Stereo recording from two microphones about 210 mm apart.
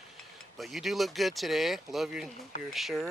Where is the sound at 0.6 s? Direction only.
Centre (ahead or behind).